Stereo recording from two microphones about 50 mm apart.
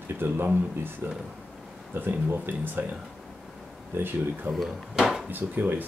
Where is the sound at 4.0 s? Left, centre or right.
Right.